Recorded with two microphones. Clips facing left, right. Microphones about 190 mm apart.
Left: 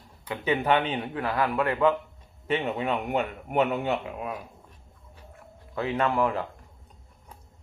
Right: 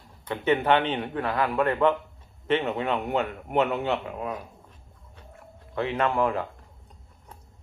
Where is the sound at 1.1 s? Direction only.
25° right (ahead or behind).